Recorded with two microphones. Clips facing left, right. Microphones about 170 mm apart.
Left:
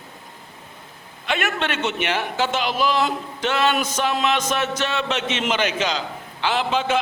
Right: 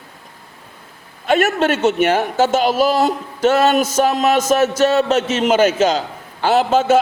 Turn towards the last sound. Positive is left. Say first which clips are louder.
# right 8 dB
turn(degrees=-45)  # may be behind; listen again after turning